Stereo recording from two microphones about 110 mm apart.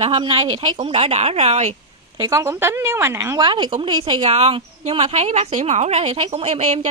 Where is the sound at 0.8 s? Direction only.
60° right (ahead or behind); by 1.7 s 75° right (ahead or behind).